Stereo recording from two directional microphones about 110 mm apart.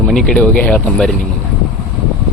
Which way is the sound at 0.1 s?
5° left (ahead or behind).